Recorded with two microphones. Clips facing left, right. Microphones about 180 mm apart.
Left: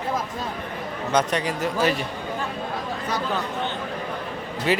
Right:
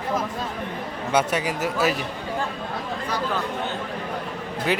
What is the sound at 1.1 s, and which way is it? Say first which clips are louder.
Speech: even; 10° right (ahead or behind).